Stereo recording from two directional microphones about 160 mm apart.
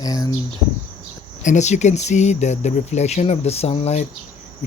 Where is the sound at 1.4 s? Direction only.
50° left (ahead or behind).